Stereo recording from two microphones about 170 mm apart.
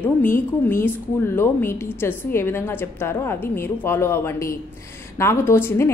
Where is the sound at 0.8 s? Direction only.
15° left (ahead or behind).